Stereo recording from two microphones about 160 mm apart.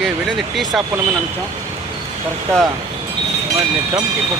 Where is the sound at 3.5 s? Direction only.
20° right (ahead or behind).